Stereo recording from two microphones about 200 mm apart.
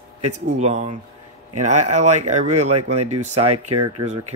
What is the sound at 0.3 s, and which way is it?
Speech, 35° right (ahead or behind).